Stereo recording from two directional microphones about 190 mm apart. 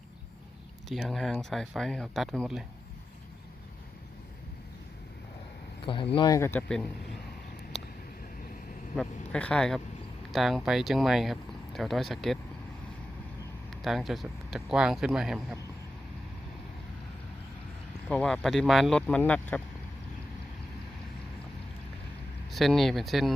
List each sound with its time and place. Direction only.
0.9 s speech: centre (ahead or behind)
5.8 s speech: 25° left (ahead or behind); by 6.8 s 5° left (ahead or behind)
9.3 s speech: 5° left (ahead or behind)
13.7 s speech: centre (ahead or behind)
18.1 s speech: 5° left (ahead or behind)
22.4 s speech: centre (ahead or behind)